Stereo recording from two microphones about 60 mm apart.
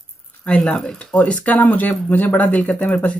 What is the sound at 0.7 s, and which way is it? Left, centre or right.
Speech, centre.